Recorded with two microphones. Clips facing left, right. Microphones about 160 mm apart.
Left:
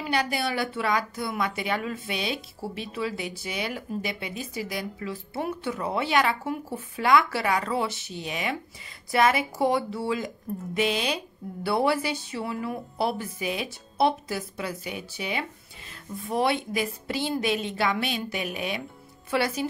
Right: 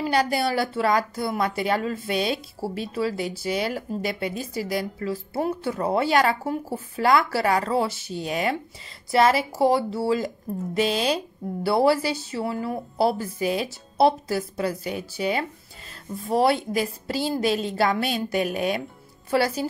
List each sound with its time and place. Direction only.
0.0 s a woman's voice: 35° right (ahead or behind)